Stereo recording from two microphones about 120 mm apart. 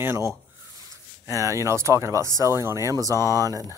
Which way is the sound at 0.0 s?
20° right (ahead or behind).